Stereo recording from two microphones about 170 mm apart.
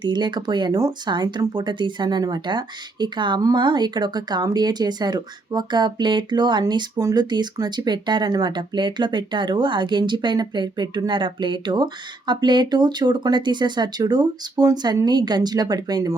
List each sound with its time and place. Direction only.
0.0 s speech: 25° right (ahead or behind)